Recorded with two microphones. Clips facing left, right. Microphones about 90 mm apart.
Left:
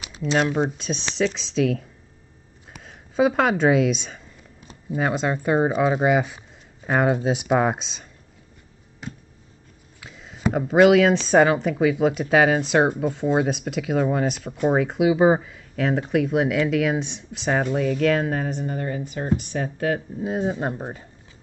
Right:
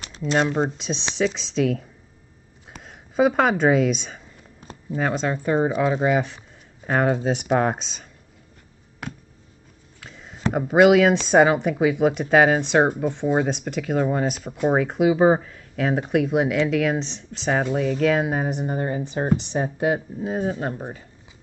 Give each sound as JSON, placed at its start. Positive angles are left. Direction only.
{"t": 0.2, "sound": "speech", "side_deg": 0}
{"t": 9.0, "sound": "a sound", "side_deg": -70}
{"t": 9.9, "sound": "speech", "side_deg": 5}
{"t": 20.2, "sound": "speech", "side_deg": 0}
{"t": 20.4, "sound": "speech", "side_deg": 10}